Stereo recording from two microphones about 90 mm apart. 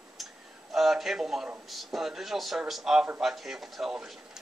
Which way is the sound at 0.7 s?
5° right (ahead or behind).